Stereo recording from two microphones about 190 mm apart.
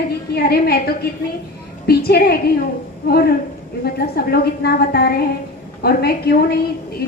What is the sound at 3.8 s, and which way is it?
A woman's voice, 55° left (ahead or behind).